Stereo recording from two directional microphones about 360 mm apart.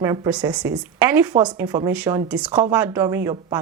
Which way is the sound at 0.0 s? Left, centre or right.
Centre.